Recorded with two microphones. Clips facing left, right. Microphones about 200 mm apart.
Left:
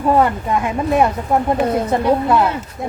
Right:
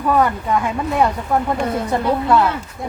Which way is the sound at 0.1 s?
20° left (ahead or behind).